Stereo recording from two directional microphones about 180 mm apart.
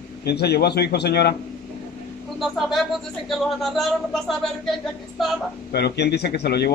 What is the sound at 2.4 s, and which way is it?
Speech, centre (ahead or behind).